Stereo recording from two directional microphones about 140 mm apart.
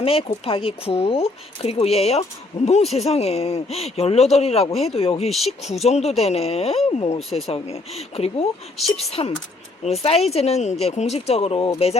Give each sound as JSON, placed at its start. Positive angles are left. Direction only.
{"t": 0.0, "sound": "speech", "side_deg": 45}